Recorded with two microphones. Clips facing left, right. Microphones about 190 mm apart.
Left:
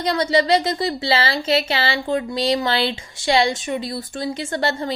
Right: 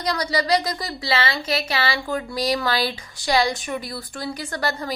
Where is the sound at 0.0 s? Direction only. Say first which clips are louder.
Left 5 dB; 25° left (ahead or behind).